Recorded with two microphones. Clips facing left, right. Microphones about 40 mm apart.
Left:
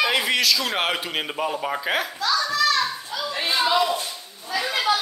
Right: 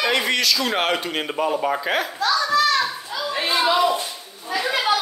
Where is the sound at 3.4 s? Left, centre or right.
Right.